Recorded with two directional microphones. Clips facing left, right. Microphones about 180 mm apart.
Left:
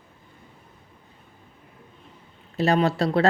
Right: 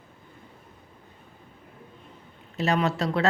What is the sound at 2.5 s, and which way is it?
Speech, 35° left (ahead or behind).